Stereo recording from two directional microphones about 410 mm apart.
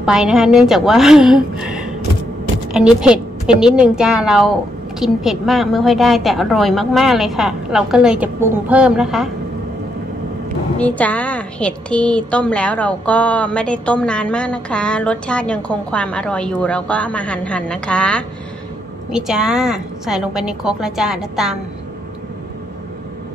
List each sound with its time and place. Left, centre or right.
0.0 s a woman's voice: centre
10.8 s a woman's voice: centre